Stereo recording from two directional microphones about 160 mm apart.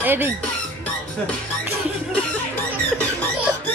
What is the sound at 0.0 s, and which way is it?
Speech, 15° right (ahead or behind).